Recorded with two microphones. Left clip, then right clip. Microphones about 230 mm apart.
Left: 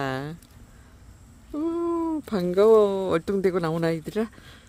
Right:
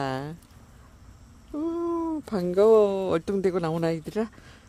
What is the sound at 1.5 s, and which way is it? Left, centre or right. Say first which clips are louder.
Speech: left 2 dB; centre.